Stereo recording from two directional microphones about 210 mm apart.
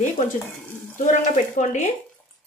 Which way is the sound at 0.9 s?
35° left (ahead or behind).